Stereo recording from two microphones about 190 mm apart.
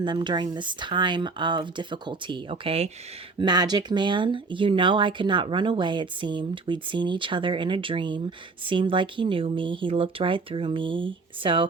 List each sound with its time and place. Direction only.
0.0 s speech: 25° right (ahead or behind)